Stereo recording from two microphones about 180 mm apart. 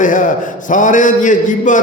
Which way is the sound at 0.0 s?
45° left (ahead or behind).